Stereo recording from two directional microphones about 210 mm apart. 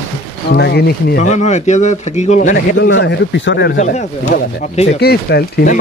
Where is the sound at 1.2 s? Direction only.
35° left (ahead or behind).